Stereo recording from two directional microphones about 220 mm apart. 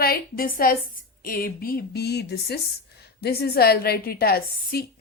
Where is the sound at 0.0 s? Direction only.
40° left (ahead or behind).